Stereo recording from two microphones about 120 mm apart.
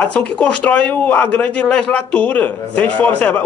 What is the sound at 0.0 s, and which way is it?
Speech, 10° left (ahead or behind).